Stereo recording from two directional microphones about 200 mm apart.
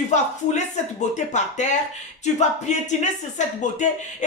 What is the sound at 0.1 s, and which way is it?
Speech, 35° left (ahead or behind).